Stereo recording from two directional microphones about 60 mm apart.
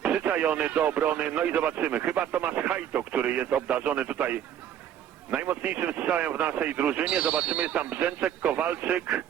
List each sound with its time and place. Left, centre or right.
0.0 s radio: right
0.8 s speech: right